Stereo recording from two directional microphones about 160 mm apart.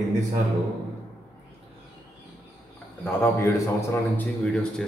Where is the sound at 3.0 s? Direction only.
15° left (ahead or behind).